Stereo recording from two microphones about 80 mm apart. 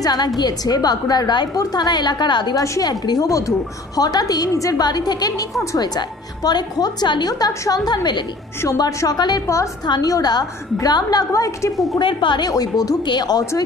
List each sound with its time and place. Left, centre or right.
0.0 s a woman's voice: left
2.5 s a woman's voice: left
5.6 s a woman's voice: left
5.9 s a woman's voice: left
12.0 s a woman's voice: left
12.4 s a woman's voice: left